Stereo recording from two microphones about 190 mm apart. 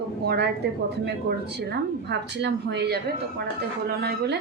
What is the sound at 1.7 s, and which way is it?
A woman's voice, 60° right (ahead or behind).